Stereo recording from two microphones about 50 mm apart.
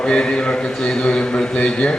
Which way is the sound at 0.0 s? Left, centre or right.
Centre.